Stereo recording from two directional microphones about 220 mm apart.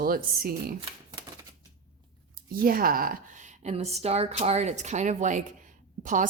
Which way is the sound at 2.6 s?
40° right (ahead or behind).